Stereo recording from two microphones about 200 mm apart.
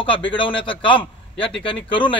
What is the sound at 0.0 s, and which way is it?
A man's voice, 25° left (ahead or behind).